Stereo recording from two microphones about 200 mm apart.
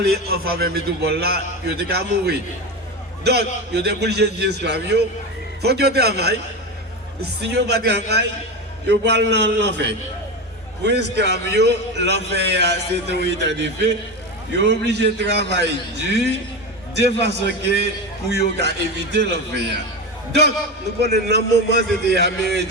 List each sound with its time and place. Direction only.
0.0 s a man's voice: 50° right (ahead or behind)
21.0 s a man's voice: 55° right (ahead or behind)